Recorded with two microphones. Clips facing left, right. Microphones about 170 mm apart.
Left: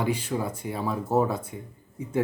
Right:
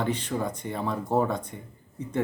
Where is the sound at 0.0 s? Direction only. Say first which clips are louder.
Left 1 dB; 10° left (ahead or behind).